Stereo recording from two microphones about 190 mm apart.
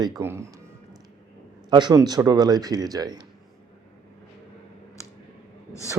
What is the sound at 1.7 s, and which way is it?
Speech, 20° right (ahead or behind).